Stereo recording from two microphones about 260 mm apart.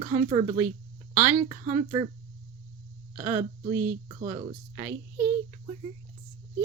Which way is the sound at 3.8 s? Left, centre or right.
Right.